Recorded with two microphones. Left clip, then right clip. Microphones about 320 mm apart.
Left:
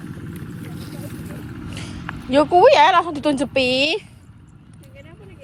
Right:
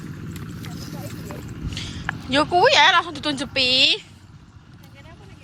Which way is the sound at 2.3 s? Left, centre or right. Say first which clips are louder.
Left 4 dB; centre.